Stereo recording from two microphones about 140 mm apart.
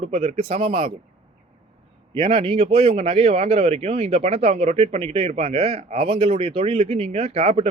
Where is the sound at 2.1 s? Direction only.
35° right (ahead or behind).